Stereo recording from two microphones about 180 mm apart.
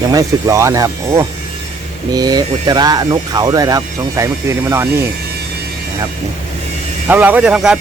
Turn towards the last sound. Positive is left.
turn(degrees=-5)  # may be behind; listen again after turning